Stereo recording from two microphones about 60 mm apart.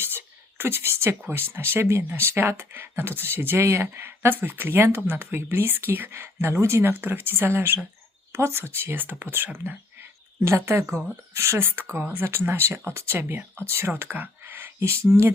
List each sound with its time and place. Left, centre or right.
0.0 s a sound: right
1.3 s speech: right
6.8 s speech: right
10.4 s speech: right
11.6 s speech: right